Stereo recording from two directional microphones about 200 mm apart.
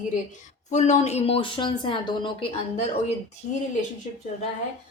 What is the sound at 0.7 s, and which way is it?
A woman's voice, 35° left (ahead or behind).